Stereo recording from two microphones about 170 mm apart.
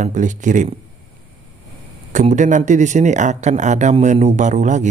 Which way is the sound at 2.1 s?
45° right (ahead or behind).